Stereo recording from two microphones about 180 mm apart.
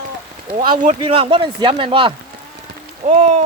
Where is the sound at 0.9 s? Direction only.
30° right (ahead or behind).